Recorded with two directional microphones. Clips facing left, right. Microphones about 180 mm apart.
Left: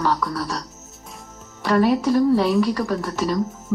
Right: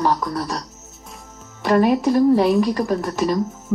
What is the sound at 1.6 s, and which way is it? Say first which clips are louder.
Speech: right 2 dB; 20° right (ahead or behind).